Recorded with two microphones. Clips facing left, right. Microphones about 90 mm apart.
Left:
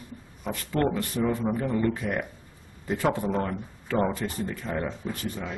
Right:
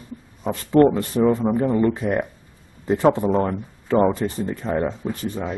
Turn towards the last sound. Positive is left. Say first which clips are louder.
# right 6 dB
turn(degrees=-25)  # may be behind; listen again after turning